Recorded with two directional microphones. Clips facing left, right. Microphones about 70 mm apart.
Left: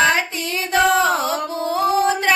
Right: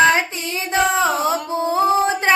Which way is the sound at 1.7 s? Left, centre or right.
Right.